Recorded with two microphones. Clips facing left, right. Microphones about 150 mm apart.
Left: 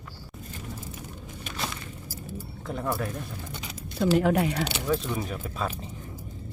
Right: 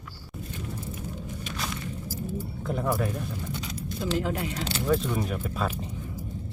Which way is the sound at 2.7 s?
Centre (ahead or behind).